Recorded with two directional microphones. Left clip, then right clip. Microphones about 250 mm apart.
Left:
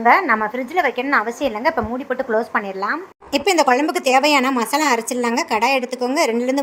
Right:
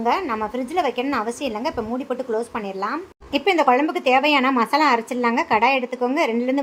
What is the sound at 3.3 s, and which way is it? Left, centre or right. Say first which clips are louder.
Speech: left 2 dB; left.